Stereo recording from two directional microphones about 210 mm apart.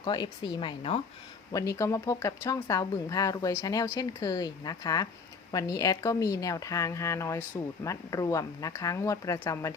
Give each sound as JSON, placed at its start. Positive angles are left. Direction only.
{"t": 0.0, "sound": "speech", "side_deg": 20}
{"t": 1.5, "sound": "a woman's voice", "side_deg": 15}